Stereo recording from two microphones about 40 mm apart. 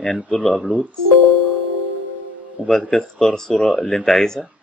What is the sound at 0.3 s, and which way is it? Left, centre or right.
Speech, centre.